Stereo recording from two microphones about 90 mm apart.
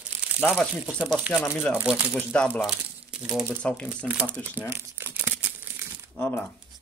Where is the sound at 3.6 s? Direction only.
15° left (ahead or behind).